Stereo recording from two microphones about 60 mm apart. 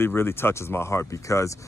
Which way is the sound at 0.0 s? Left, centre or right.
Left.